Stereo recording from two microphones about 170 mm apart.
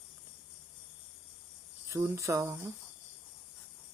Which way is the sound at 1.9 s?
15° right (ahead or behind).